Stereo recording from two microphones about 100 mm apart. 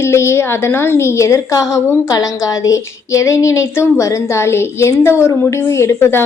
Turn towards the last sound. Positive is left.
turn(degrees=25)  # may be behind; listen again after turning